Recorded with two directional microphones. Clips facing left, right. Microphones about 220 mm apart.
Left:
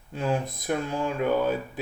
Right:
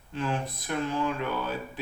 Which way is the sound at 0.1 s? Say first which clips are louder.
Left 4 dB; 45° left (ahead or behind).